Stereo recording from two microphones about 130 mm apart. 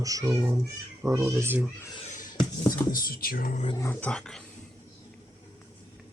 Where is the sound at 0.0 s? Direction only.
25° right (ahead or behind).